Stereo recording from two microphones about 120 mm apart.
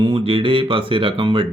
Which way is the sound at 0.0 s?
45° right (ahead or behind).